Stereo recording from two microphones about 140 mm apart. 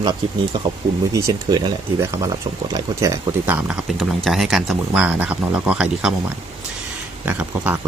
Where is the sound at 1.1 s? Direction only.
25° right (ahead or behind); by 3.9 s 10° right (ahead or behind).